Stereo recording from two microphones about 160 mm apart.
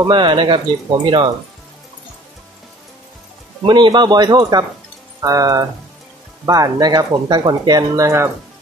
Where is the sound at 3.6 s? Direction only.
30° right (ahead or behind).